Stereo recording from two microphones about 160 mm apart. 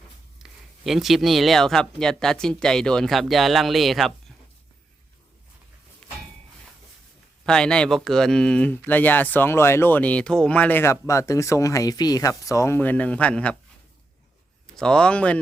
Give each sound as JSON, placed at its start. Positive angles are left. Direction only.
{"t": 0.4, "sound": "speech", "side_deg": 0}
{"t": 6.0, "sound": "a sound", "side_deg": 5}
{"t": 7.4, "sound": "speech", "side_deg": 5}
{"t": 14.8, "sound": "speech", "side_deg": 5}